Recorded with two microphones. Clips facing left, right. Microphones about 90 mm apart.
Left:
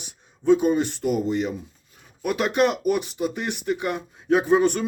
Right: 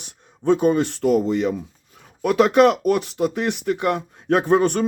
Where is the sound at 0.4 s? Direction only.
60° right (ahead or behind).